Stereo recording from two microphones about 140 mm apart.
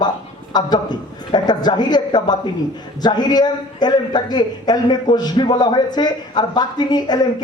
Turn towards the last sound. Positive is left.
turn(degrees=30)  # may be behind; listen again after turning